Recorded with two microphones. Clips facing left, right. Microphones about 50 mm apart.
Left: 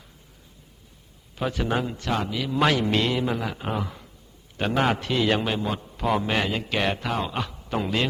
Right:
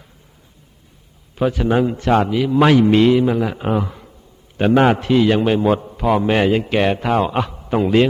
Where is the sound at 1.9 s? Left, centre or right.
Right.